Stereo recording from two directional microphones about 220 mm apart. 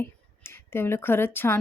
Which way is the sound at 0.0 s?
10° left (ahead or behind).